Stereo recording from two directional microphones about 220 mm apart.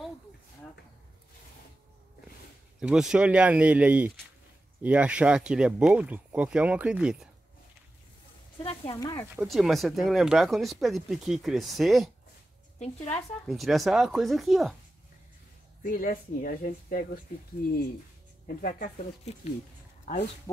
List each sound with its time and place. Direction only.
2.8 s speech: 5° right (ahead or behind)
8.6 s speech: 20° left (ahead or behind)
9.3 s speech: centre (ahead or behind)
15.8 s speech: 40° left (ahead or behind)
18.5 s speech: 40° left (ahead or behind)